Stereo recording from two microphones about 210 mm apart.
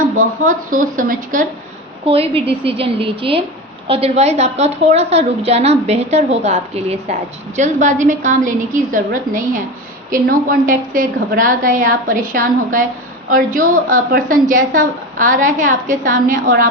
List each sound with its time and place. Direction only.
0.4 s a woman's voice: 40° right (ahead or behind)
2.0 s a woman's voice: 25° right (ahead or behind)